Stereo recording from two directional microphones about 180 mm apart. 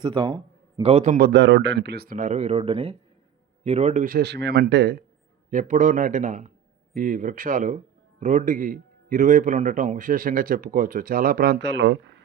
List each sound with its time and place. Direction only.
0.0 s speech: 25° right (ahead or behind)
1.2 s speech: 75° right (ahead or behind); by 4.1 s 40° right (ahead or behind)
4.1 s speech: 70° right (ahead or behind)
5.5 s a man's voice: 45° right (ahead or behind); by 11.9 s 80° right